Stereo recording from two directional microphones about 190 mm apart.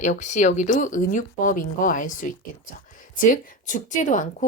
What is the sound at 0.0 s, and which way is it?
Speech, 40° left (ahead or behind).